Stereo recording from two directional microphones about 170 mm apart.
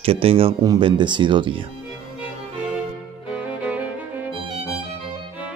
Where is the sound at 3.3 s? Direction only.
5° right (ahead or behind).